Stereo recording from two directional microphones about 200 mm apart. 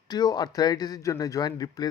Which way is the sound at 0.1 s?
20° left (ahead or behind).